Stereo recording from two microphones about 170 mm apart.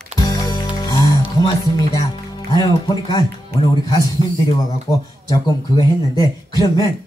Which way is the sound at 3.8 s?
20° left (ahead or behind).